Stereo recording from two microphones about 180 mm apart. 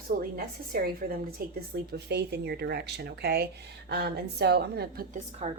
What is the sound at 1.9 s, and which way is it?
Speech, 65° right (ahead or behind).